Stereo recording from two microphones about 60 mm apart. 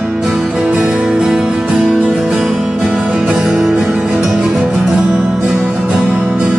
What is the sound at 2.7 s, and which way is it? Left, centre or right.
Music, right.